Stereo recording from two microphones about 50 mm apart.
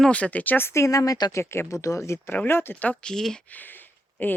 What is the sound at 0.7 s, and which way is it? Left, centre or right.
Speech, left.